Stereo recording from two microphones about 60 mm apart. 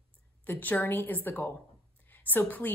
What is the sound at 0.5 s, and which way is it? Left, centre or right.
A woman's voice, left.